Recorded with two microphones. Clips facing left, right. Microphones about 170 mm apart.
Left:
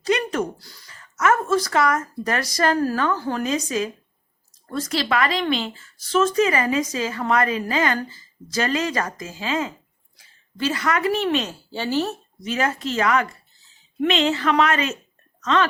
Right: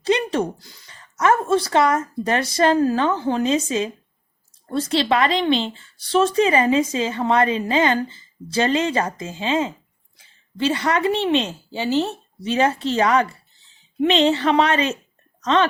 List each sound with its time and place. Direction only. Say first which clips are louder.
0.0 s a sound: right 2 dB; 30° right (ahead or behind)
0.9 s a woman's voice: right 2 dB; 30° right (ahead or behind)
12.4 s a woman's voice: right 5 dB; 30° right (ahead or behind)